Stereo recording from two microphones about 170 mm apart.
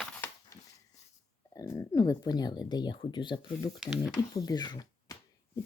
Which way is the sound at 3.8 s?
5° right (ahead or behind).